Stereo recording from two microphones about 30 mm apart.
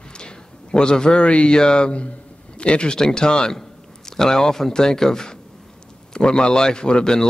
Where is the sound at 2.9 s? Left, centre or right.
Left.